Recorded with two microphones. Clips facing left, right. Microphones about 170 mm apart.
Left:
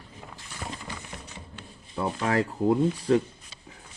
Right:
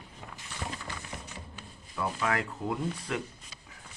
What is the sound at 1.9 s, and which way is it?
Speech, 30° left (ahead or behind).